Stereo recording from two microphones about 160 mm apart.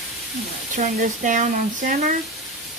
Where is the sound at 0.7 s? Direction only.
55° right (ahead or behind).